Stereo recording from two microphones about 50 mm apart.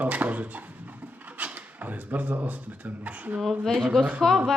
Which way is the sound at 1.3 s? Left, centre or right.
Right.